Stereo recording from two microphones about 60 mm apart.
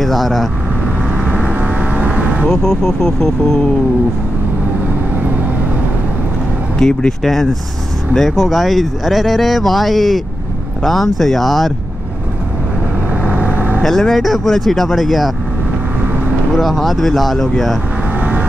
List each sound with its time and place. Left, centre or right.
0.0 s speech: centre
1.3 s vehicle: right
2.4 s speech: centre
6.8 s speech: centre
13.2 s vehicle: right
13.8 s speech: centre
16.5 s speech: centre
18.2 s vehicle: right